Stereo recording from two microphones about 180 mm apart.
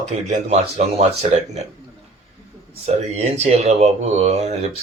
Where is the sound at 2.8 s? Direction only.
35° right (ahead or behind).